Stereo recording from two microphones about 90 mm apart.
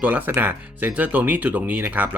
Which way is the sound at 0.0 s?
20° right (ahead or behind).